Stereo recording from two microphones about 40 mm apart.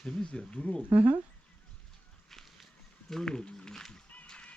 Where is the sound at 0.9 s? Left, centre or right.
Right.